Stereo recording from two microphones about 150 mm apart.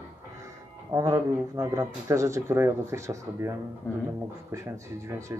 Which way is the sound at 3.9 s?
20° left (ahead or behind).